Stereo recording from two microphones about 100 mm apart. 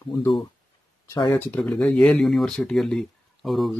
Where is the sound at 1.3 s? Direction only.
20° left (ahead or behind).